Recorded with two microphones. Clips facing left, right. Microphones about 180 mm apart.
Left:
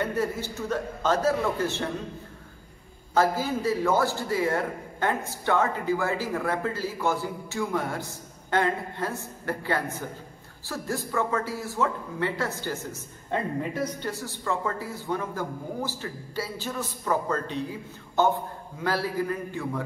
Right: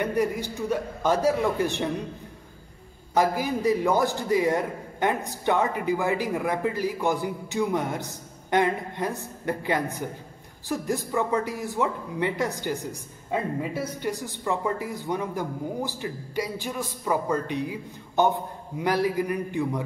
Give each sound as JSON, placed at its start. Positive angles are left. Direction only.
{"t": 0.0, "sound": "a man's voice", "side_deg": -15}
{"t": 3.2, "sound": "a man's voice", "side_deg": -15}